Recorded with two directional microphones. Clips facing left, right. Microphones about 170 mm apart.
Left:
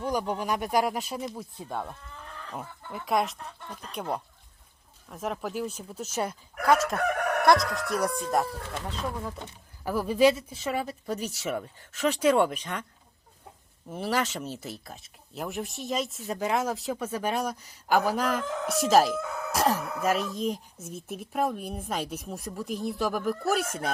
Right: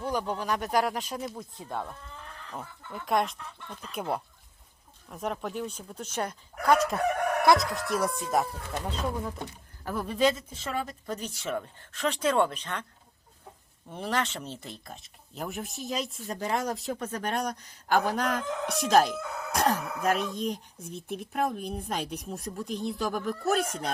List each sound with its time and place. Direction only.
0.0 s speech: 10° left (ahead or behind)
3.3 s speech: 40° left (ahead or behind)
3.9 s speech: 5° right (ahead or behind)
9.8 s speech: 5° left (ahead or behind)
13.9 s speech: 5° left (ahead or behind)